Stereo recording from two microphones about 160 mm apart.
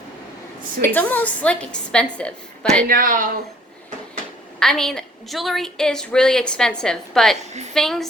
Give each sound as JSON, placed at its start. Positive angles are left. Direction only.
{"t": 0.8, "sound": "a woman's voice", "side_deg": 10}
{"t": 2.8, "sound": "speech", "side_deg": -65}
{"t": 4.6, "sound": "a woman's voice", "side_deg": 5}